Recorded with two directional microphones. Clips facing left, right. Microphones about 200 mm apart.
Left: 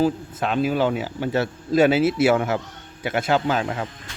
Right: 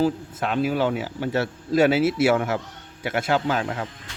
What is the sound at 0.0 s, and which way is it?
Speech, 20° left (ahead or behind).